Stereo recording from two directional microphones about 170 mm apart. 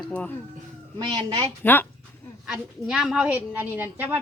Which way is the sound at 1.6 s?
10° left (ahead or behind).